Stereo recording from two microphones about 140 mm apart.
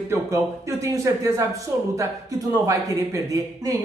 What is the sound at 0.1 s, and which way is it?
Speech, 20° right (ahead or behind).